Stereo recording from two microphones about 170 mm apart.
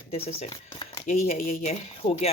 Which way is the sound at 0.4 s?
35° left (ahead or behind).